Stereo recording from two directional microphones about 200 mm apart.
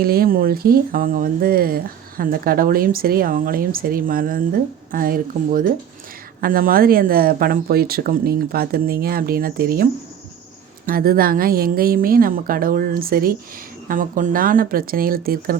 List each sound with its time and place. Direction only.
0.0 s speech: 50° right (ahead or behind)